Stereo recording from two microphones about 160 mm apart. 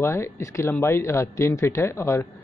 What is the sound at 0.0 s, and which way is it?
Speech, 15° left (ahead or behind).